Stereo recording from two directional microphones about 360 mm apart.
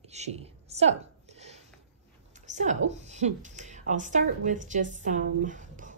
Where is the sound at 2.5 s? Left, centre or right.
Centre.